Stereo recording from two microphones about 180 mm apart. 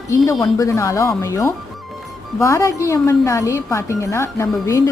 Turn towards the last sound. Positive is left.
turn(degrees=15)  # may be behind; listen again after turning